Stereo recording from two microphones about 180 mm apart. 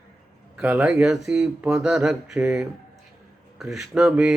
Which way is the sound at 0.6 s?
10° right (ahead or behind).